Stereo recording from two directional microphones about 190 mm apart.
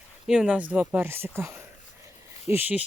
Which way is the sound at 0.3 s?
5° right (ahead or behind).